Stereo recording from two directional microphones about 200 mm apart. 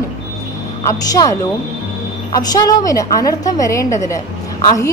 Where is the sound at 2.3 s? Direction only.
20° left (ahead or behind).